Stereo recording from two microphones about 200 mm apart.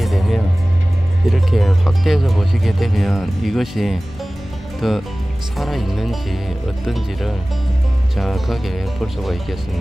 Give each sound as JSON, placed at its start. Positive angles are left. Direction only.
{"t": 0.0, "sound": "music", "side_deg": 0}
{"t": 1.3, "sound": "speech", "side_deg": 0}